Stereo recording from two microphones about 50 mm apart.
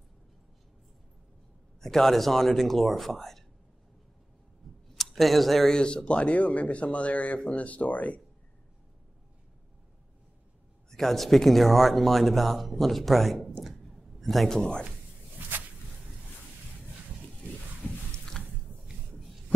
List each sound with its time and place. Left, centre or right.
1.8 s speech: centre
4.9 s speech: centre
5.7 s speech: centre
10.9 s speech: centre
14.6 s a man's voice: centre
15.4 s a sound: right
17.3 s a sound: centre